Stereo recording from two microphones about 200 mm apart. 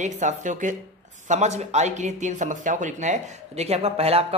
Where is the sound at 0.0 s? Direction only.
35° right (ahead or behind).